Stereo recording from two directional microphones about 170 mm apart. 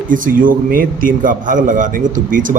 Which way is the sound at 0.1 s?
55° right (ahead or behind).